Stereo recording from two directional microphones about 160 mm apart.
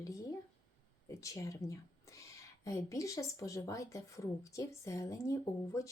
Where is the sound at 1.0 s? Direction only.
20° left (ahead or behind).